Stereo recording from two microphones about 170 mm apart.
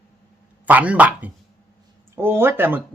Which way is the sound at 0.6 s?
10° right (ahead or behind).